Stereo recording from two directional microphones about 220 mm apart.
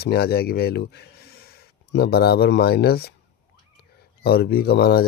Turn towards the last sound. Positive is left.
turn(degrees=45)  # may be behind; listen again after turning